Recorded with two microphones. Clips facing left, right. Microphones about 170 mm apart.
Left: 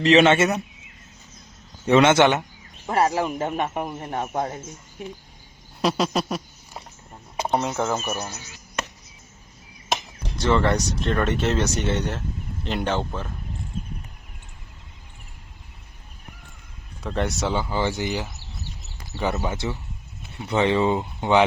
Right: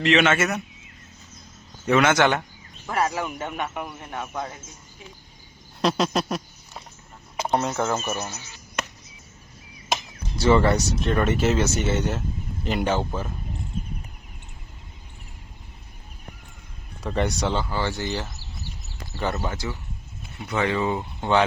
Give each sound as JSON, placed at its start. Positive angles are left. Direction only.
{"t": 0.0, "sound": "speech", "side_deg": 35}
{"t": 1.9, "sound": "speech", "side_deg": 25}
{"t": 5.8, "sound": "speech", "side_deg": 0}
{"t": 7.5, "sound": "speech", "side_deg": 0}
{"t": 9.9, "sound": "speech", "side_deg": -5}
{"t": 17.0, "sound": "speech", "side_deg": 0}
{"t": 17.6, "sound": "speech", "side_deg": 15}
{"t": 20.5, "sound": "speech", "side_deg": 25}